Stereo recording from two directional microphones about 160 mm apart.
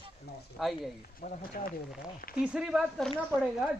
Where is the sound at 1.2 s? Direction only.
65° left (ahead or behind).